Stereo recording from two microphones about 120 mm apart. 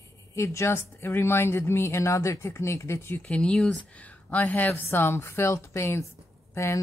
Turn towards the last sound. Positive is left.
turn(degrees=25)  # may be behind; listen again after turning